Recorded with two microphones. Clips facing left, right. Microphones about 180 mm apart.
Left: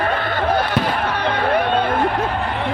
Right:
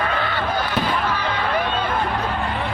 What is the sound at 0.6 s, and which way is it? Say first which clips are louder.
Fireworks: left 2 dB; 60° left (ahead or behind).